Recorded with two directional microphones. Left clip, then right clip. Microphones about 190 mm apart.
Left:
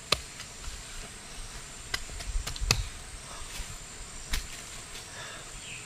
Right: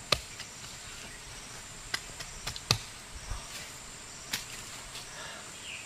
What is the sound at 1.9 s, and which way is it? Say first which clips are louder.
Clip-clop: left 1 dB; 15° left (ahead or behind).